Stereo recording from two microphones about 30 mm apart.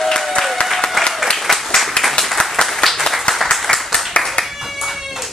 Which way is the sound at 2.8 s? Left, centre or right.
Centre.